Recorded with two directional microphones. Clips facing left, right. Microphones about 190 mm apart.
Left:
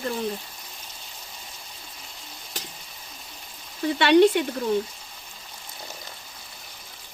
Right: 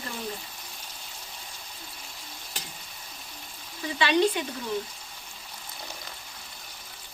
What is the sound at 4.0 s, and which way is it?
Speech, 65° left (ahead or behind).